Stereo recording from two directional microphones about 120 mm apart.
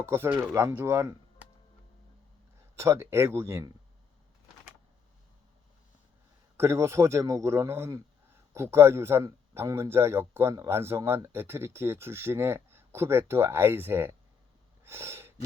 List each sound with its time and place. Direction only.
0.0 s speech: 20° right (ahead or behind)
2.7 s speech: 20° right (ahead or behind)
6.6 s speech: 20° right (ahead or behind)
14.8 s gasp: 20° right (ahead or behind)